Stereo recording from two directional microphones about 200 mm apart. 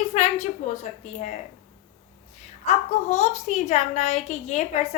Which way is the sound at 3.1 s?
35° left (ahead or behind).